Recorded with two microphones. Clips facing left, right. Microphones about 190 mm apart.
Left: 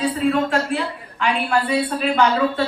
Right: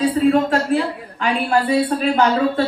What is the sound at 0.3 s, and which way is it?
A woman's voice, 40° right (ahead or behind).